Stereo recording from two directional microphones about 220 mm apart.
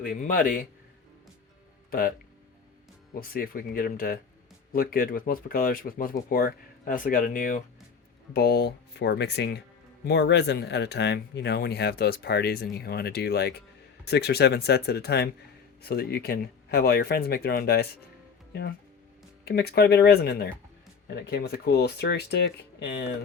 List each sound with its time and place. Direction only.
0.0 s speech: 40° left (ahead or behind)
1.9 s speech: 40° left (ahead or behind)
3.2 s speech: 40° left (ahead or behind)
19.5 s speech: 45° left (ahead or behind)